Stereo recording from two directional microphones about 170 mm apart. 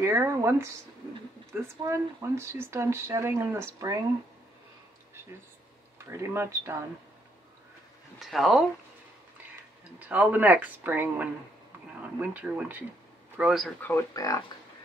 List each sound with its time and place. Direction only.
0.0 s speech: 15° right (ahead or behind)
6.0 s speech: 15° right (ahead or behind)
8.2 s speech: centre (ahead or behind)
9.9 s speech: 10° right (ahead or behind)
13.7 s speech: 10° left (ahead or behind)